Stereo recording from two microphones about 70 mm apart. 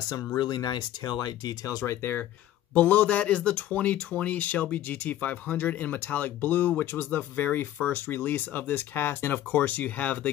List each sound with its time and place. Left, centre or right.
0.4 s speech: left
2.7 s speech: left